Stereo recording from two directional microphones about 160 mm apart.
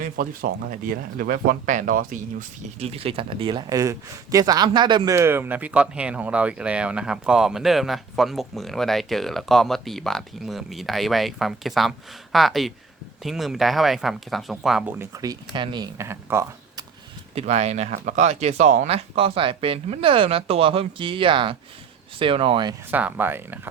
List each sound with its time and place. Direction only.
0.0 s speech: 65° right (ahead or behind)
2.7 s a man's voice: 40° right (ahead or behind); by 16.8 s 15° right (ahead or behind)
17.3 s speech: 45° right (ahead or behind)
22.9 s speech: 10° right (ahead or behind)